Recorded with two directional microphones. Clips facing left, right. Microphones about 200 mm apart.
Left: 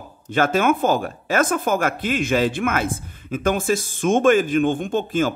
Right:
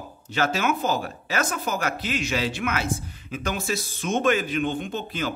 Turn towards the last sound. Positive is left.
turn(degrees=45)  # may be behind; listen again after turning